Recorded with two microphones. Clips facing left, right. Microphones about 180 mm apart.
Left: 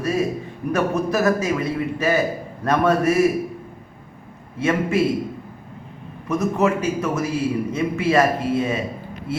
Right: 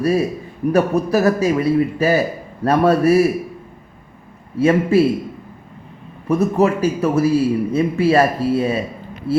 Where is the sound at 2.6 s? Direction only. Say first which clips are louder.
Right 4 dB; 35° right (ahead or behind).